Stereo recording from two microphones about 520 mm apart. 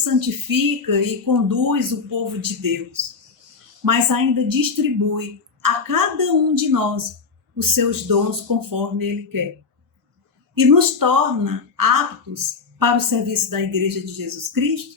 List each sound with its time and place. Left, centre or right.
0.0 s speech: right
10.5 s speech: right